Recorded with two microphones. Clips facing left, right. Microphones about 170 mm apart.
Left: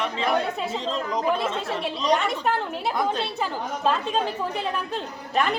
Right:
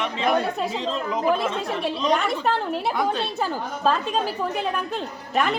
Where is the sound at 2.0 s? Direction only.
Centre (ahead or behind).